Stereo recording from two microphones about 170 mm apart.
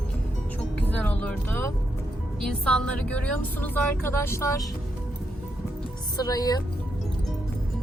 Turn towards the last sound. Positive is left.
turn(degrees=20)  # may be behind; listen again after turning